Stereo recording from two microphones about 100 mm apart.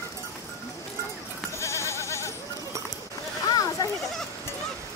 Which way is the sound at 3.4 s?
40° left (ahead or behind).